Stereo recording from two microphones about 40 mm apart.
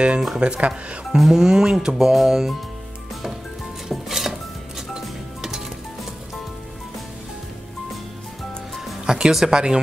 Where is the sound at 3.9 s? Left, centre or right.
Centre.